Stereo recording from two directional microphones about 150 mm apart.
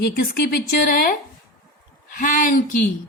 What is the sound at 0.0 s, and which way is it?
Speech, 90° left.